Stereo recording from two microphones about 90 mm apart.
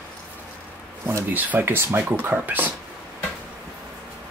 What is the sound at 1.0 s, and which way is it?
Speech, 25° right (ahead or behind).